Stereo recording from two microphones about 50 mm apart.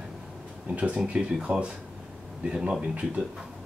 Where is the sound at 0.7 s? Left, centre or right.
Right.